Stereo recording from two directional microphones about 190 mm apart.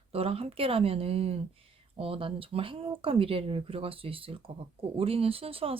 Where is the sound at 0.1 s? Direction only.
30° right (ahead or behind).